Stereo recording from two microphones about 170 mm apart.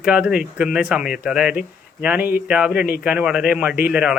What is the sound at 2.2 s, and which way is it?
Speech, 60° left (ahead or behind).